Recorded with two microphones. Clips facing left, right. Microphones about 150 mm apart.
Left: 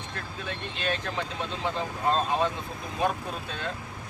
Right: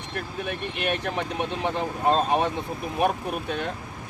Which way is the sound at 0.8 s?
70° right (ahead or behind).